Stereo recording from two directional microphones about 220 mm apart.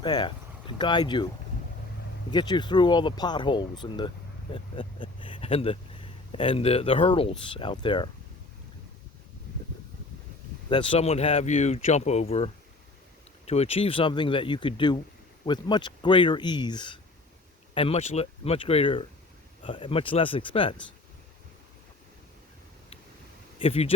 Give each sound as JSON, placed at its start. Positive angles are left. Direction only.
{"t": 0.0, "sound": "speech", "side_deg": 20}
{"t": 2.3, "sound": "speech", "side_deg": 20}
{"t": 10.7, "sound": "speech", "side_deg": 25}
{"t": 23.6, "sound": "speech", "side_deg": 25}